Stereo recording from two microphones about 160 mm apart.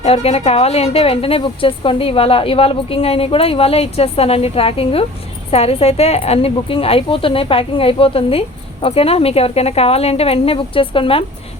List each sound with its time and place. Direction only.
0.0 s a woman's voice: 40° left (ahead or behind)